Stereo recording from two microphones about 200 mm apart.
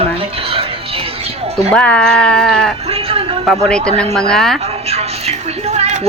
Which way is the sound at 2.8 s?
30° right (ahead or behind).